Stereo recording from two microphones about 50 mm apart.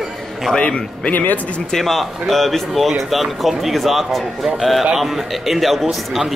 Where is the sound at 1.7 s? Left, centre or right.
Centre.